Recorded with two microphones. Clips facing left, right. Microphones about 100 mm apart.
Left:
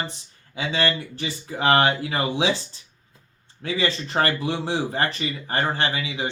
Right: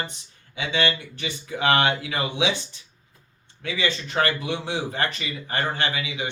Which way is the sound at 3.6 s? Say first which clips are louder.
Left 2 dB; 35° left (ahead or behind).